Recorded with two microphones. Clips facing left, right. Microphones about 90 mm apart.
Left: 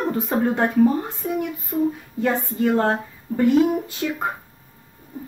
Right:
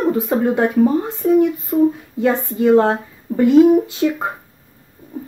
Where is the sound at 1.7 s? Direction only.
60° right (ahead or behind).